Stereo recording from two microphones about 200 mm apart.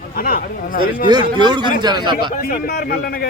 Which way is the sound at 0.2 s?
45° left (ahead or behind).